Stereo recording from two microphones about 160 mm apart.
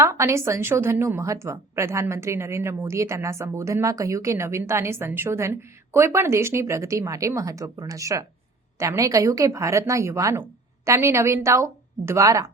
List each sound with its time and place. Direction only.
0.0 s a woman's voice: 20° right (ahead or behind)